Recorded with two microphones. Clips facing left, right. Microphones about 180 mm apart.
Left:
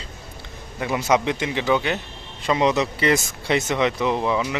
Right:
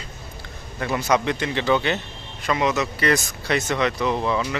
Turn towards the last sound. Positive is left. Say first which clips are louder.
# left 1 dB
turn(degrees=15)  # may be behind; listen again after turning